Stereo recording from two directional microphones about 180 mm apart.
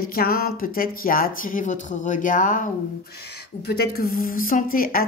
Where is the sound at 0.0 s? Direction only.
55° left (ahead or behind).